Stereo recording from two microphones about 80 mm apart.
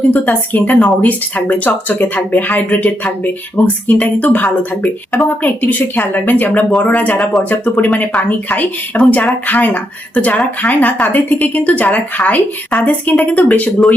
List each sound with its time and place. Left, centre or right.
0.1 s speech: left